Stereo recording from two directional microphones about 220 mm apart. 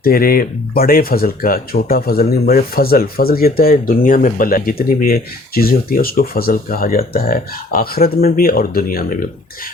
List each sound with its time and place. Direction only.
0.0 s speech: 40° left (ahead or behind)